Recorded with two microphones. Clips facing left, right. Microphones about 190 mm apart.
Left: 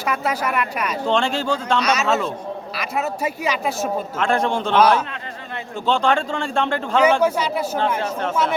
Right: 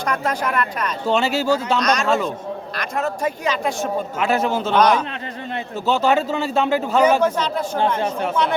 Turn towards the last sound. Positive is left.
turn(degrees=10)  # may be behind; listen again after turning